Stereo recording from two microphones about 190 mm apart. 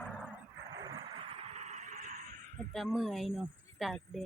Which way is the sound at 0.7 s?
20° right (ahead or behind).